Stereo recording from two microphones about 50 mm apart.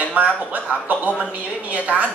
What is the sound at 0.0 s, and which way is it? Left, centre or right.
A woman's voice, right.